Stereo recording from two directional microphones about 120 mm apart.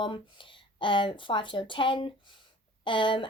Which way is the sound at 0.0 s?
45° left (ahead or behind).